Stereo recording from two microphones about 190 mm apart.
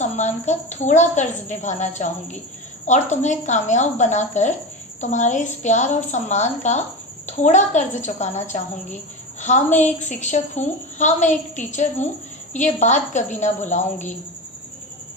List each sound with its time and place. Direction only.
0.0 s a woman's voice: 40° left (ahead or behind)